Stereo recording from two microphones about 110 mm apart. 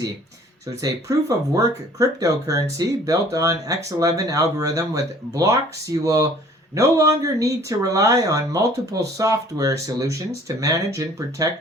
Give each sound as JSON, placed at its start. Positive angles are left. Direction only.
{"t": 0.8, "sound": "speech", "side_deg": -30}